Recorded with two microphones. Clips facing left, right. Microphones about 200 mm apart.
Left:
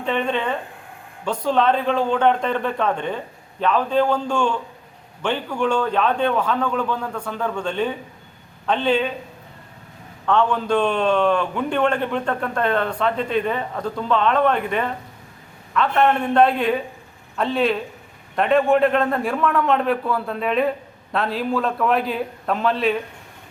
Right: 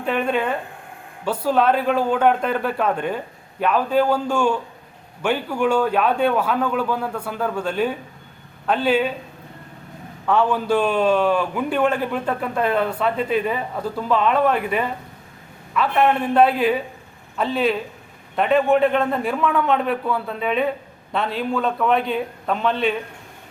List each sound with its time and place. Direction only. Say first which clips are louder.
0.0 s a man's voice: right 1 dB; 5° right (ahead or behind)
10.2 s a man's voice: even; 5° right (ahead or behind)